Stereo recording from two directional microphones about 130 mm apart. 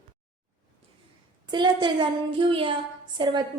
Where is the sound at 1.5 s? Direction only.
35° right (ahead or behind).